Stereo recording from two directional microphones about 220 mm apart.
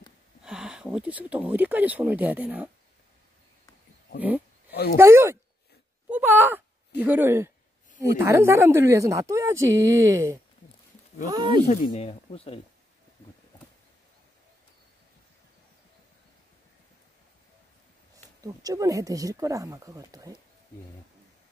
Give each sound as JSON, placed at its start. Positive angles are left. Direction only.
{"t": 0.4, "sound": "speech", "side_deg": -5}
{"t": 4.6, "sound": "a sound", "side_deg": 45}
{"t": 4.9, "sound": "speech", "side_deg": -10}
{"t": 6.0, "sound": "a sound", "side_deg": -10}
{"t": 7.0, "sound": "speech", "side_deg": -10}
{"t": 11.6, "sound": "speech", "side_deg": 35}
{"t": 18.1, "sound": "speech", "side_deg": -15}